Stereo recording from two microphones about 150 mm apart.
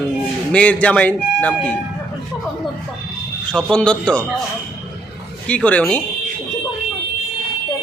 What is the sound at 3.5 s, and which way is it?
Speech, 5° left (ahead or behind).